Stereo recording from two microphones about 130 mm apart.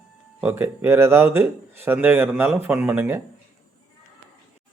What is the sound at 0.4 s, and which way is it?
Speech, 15° right (ahead or behind).